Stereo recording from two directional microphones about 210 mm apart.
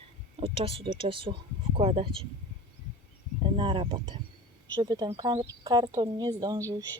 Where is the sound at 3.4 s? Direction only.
25° right (ahead or behind).